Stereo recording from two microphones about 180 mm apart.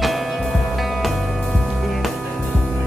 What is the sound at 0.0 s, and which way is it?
Music, centre (ahead or behind).